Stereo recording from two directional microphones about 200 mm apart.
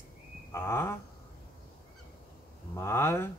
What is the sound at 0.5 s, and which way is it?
Speech, 10° left (ahead or behind).